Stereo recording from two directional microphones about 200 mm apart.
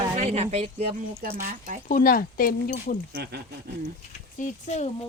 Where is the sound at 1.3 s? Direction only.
45° right (ahead or behind).